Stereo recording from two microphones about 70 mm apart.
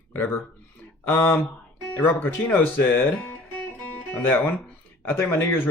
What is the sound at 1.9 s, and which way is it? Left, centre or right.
Speech, left.